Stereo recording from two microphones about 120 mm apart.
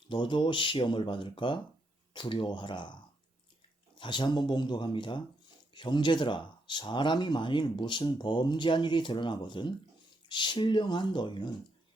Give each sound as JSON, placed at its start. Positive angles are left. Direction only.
{"t": 0.1, "sound": "speech", "side_deg": 40}